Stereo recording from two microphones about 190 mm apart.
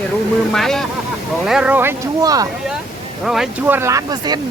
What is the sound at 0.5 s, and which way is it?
Speech, centre (ahead or behind).